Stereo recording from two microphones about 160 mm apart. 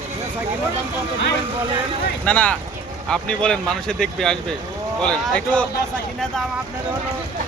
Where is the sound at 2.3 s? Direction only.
10° left (ahead or behind).